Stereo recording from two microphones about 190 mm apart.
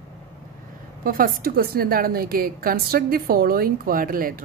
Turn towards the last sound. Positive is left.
turn(degrees=-50)  # may be behind; listen again after turning